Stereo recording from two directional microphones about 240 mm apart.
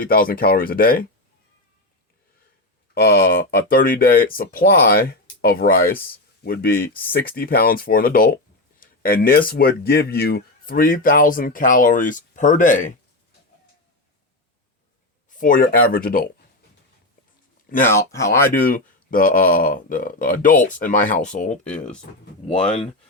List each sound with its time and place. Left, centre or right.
0.0 s speech: left
2.9 s speech: left
8.8 s a sound: left
9.5 s speech: left
15.3 s speech: left
17.8 s speech: centre
18.5 s speech: left
21.6 s speech: centre
22.4 s speech: left